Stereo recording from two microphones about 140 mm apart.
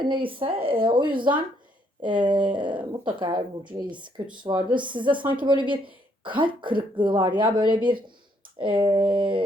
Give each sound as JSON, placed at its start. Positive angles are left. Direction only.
{"t": 0.1, "sound": "speech", "side_deg": -40}